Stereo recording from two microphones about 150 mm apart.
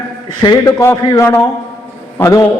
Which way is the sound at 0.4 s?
25° left (ahead or behind).